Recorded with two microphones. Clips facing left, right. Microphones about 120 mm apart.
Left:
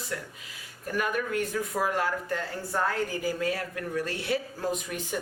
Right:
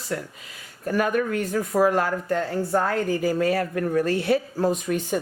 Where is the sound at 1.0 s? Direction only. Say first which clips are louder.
Right 5 dB; 45° right (ahead or behind).